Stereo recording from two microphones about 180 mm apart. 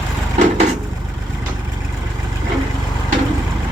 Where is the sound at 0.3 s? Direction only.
40° right (ahead or behind).